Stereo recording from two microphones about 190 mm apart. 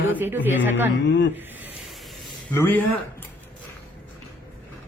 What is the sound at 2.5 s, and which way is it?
Speech, 10° left (ahead or behind).